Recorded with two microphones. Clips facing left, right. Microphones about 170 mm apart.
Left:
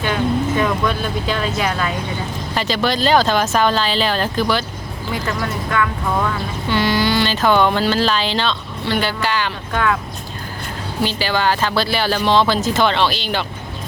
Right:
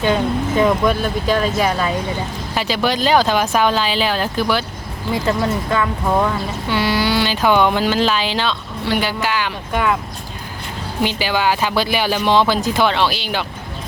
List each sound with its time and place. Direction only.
0.0 s speech: 20° right (ahead or behind)
2.6 s speech: 10° right (ahead or behind)
5.2 s speech: 25° right (ahead or behind)
6.7 s speech: 10° right (ahead or behind)
11.0 s speech: 15° right (ahead or behind)